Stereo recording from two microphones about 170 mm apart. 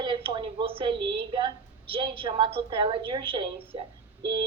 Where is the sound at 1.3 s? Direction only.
30° right (ahead or behind).